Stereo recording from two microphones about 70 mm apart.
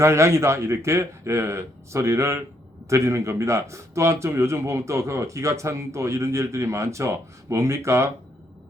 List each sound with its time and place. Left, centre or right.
0.0 s a man's voice: right